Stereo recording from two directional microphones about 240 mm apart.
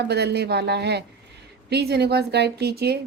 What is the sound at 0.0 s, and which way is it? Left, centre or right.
A woman's voice, right.